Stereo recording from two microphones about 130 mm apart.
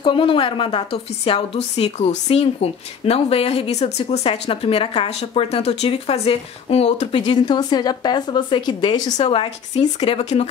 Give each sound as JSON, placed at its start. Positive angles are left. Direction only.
{"t": 0.0, "sound": "a woman's voice", "side_deg": 40}
{"t": 7.2, "sound": "a woman's voice", "side_deg": 35}
{"t": 9.3, "sound": "a woman's voice", "side_deg": 45}